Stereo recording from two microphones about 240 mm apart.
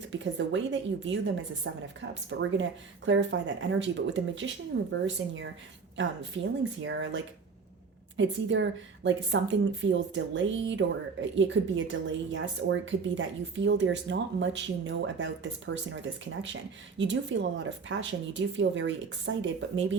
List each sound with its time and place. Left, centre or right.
0.1 s speech: right